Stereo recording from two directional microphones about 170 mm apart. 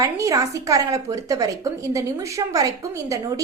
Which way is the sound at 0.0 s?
20° right (ahead or behind).